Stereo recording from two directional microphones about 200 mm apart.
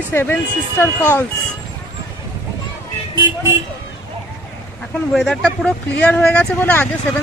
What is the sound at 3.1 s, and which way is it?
Speech, 20° right (ahead or behind).